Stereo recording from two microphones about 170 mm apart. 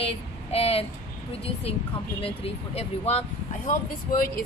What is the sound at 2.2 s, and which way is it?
A woman's voice, 35° left (ahead or behind).